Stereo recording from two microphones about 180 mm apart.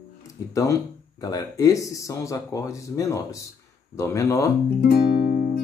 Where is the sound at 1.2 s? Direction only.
20° left (ahead or behind).